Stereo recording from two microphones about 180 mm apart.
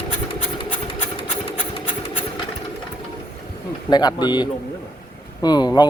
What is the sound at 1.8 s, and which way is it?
Filing, 30° left (ahead or behind).